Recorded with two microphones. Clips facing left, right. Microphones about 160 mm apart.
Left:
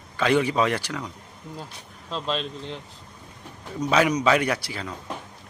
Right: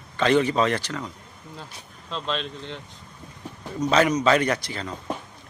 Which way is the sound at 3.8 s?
10° left (ahead or behind).